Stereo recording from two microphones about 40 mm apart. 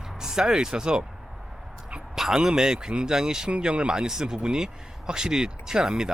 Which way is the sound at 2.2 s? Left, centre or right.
Centre.